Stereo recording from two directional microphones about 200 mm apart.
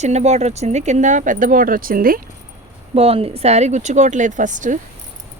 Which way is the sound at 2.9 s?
30° right (ahead or behind).